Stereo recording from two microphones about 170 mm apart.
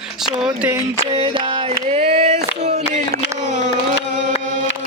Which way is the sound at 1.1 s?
30° right (ahead or behind).